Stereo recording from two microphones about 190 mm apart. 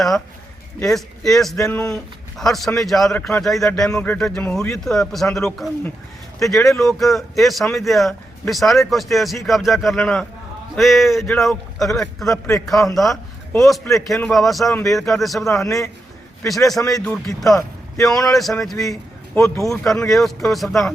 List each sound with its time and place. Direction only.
0.8 s speech: centre (ahead or behind)
1.5 s speech: 15° left (ahead or behind)
2.4 s speech: centre (ahead or behind)
14.7 s speech: 15° left (ahead or behind)
14.9 s speech: centre (ahead or behind)
16.9 s speech: centre (ahead or behind)
18.8 s speech: 15° left (ahead or behind)
19.7 s speech: 5° left (ahead or behind)